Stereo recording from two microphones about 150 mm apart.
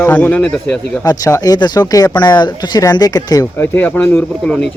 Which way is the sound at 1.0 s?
25° left (ahead or behind).